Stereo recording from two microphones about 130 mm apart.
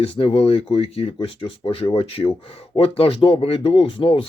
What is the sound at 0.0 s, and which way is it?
Speech, 45° left (ahead or behind).